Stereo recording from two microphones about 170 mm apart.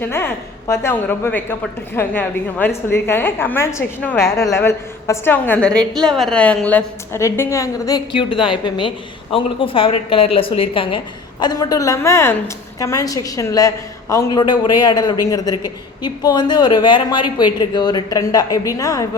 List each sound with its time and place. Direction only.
0.7 s a woman's voice: 15° left (ahead or behind)